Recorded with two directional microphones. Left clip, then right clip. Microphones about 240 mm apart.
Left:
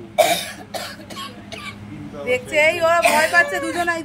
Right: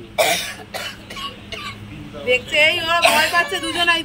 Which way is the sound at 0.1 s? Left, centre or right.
Centre.